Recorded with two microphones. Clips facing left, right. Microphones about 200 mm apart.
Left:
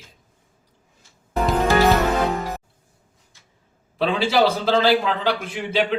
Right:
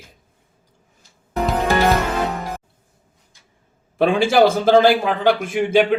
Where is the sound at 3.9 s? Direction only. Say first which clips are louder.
Right 5 dB; 50° right (ahead or behind).